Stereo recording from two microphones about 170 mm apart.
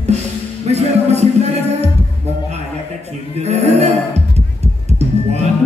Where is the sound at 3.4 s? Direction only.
40° right (ahead or behind).